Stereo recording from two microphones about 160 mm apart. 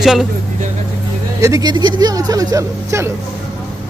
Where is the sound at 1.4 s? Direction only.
25° right (ahead or behind).